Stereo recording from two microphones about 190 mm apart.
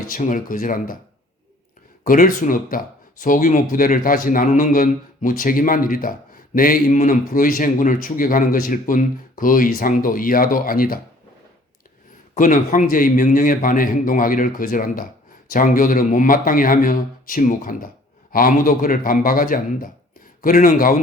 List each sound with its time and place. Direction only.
0.1 s speech: 45° left (ahead or behind)
2.0 s speech: 45° left (ahead or behind)
12.3 s speech: 45° left (ahead or behind)